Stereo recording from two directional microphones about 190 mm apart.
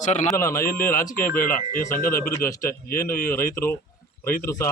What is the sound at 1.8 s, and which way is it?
Speech, 50° left (ahead or behind).